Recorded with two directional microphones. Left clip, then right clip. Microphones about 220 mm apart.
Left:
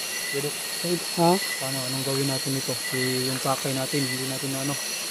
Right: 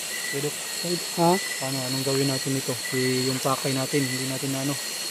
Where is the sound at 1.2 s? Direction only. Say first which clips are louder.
Even; 5° right (ahead or behind).